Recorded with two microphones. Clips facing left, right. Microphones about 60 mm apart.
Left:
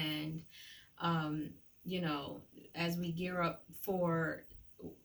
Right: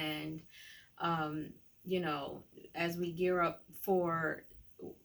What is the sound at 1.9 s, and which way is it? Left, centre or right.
Speech, right.